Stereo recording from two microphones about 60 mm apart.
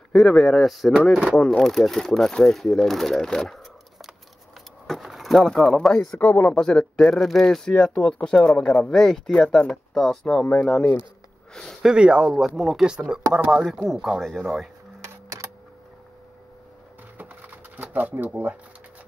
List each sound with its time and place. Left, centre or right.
0.1 s speech: centre
5.0 s a sound: centre
5.5 s speech: centre
6.1 s speech: left
6.5 s speech: centre
7.1 s speech: centre
10.4 s speech: left
11.5 s a sound: centre
11.8 s speech: centre
12.4 s speech: centre
12.8 s speech: centre
17.2 s wood: right
17.9 s speech: right